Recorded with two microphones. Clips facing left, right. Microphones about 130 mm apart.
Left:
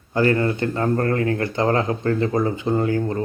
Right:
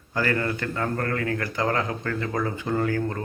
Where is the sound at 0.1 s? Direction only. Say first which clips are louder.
Left 6 dB; 25° left (ahead or behind).